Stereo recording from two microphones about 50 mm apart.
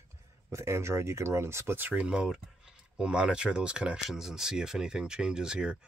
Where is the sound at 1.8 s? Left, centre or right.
Right.